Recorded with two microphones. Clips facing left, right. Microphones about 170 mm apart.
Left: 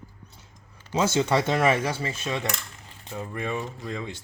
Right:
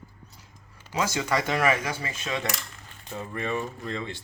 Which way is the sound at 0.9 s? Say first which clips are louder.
Left 4 dB; 25° left (ahead or behind).